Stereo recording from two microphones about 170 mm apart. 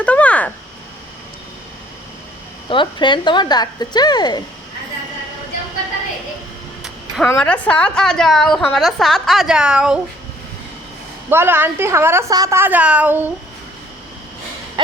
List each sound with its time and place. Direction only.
0.0 s a sound: 10° left (ahead or behind)
2.6 s a woman's voice: 30° left (ahead or behind)
7.3 s a woman's voice: 10° left (ahead or behind)
11.3 s a woman's voice: 15° right (ahead or behind)